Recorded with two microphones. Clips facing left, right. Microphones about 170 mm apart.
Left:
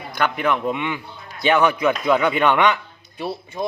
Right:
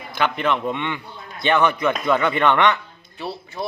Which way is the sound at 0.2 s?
5° left (ahead or behind).